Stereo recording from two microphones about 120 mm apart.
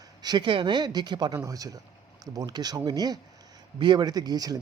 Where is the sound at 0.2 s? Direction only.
35° right (ahead or behind).